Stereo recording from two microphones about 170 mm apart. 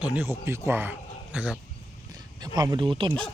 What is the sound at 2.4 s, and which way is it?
Speech, 25° right (ahead or behind).